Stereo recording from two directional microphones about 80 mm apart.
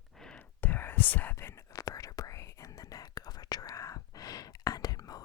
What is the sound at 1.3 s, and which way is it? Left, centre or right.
Whispering, left.